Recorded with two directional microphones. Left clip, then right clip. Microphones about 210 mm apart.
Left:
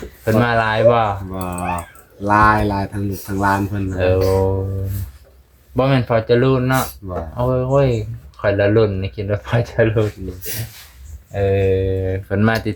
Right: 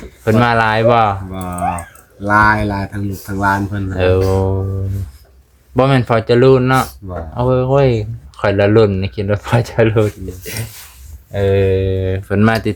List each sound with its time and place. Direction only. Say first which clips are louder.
0.3 s speech: right 4 dB; 45° right (ahead or behind); by 3.9 s 30° right (ahead or behind)
3.9 s speech: right 2 dB; 40° right (ahead or behind)
5.7 s speech: right 3 dB; 40° right (ahead or behind)